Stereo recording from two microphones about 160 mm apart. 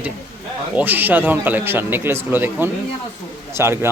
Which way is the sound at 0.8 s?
10° right (ahead or behind).